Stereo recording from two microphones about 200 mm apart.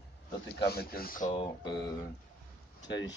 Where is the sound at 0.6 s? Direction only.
50° left (ahead or behind).